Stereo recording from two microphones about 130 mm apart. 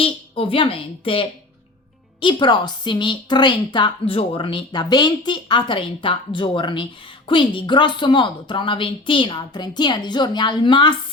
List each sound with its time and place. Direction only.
0.0 s a woman's voice: 45° left (ahead or behind)